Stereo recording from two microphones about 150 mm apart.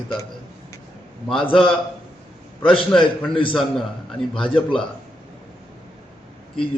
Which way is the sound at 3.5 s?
5° left (ahead or behind).